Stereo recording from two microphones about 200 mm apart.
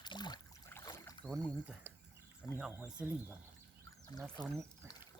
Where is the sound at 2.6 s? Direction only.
5° right (ahead or behind).